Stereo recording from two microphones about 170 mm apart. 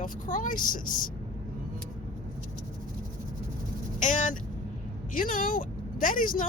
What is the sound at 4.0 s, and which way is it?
Speech, 50° left (ahead or behind).